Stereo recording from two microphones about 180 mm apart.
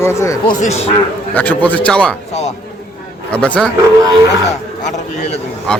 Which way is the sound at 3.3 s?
5° left (ahead or behind).